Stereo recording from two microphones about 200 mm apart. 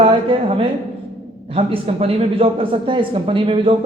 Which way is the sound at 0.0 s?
25° right (ahead or behind).